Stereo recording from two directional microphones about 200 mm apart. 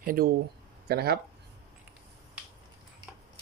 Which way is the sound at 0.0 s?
45° right (ahead or behind).